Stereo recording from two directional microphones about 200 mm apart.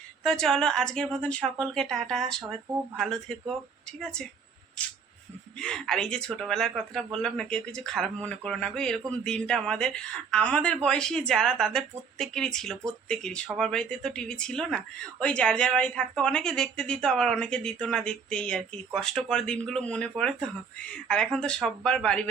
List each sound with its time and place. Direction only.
0.2 s speech: centre (ahead or behind)
5.5 s speech: 5° left (ahead or behind)